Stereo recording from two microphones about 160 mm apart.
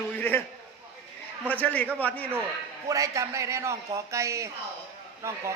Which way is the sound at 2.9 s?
20° right (ahead or behind).